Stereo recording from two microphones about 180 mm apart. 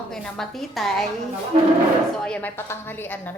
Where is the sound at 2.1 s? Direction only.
5° left (ahead or behind).